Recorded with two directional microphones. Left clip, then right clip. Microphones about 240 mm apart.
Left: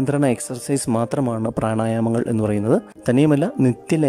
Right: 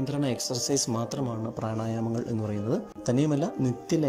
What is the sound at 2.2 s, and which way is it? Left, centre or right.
Speech, left.